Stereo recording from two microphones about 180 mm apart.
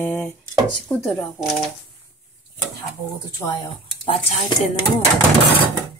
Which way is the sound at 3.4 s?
30° left (ahead or behind).